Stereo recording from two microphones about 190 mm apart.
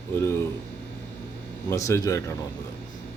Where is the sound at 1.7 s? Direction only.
15° left (ahead or behind).